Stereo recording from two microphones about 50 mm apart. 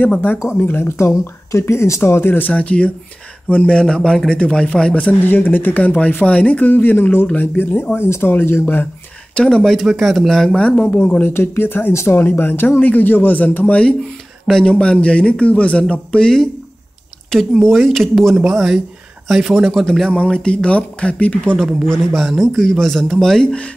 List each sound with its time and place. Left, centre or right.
0.7 s speech: left
2.5 s a man's voice: left
5.2 s speech: left
9.3 s speech: centre
9.6 s speech: centre
10.5 s speech: left
11.0 s speech: left
11.3 s speech: left
11.9 s speech: left
12.2 s speech: left
17.3 s speech: centre
20.1 s speech: left
21.8 s a man's voice: centre
23.4 s speech: left